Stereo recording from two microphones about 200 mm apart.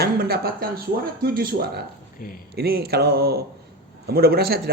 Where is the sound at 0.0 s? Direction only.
50° right (ahead or behind).